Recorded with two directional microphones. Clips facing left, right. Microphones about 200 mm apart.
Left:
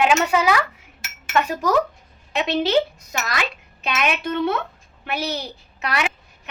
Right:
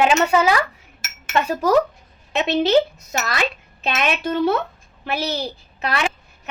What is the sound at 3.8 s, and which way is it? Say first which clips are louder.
A child's voice: right 1 dB; 30° right (ahead or behind).